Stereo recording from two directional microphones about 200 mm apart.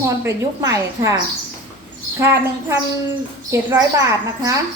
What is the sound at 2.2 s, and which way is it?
A woman's voice, 15° right (ahead or behind).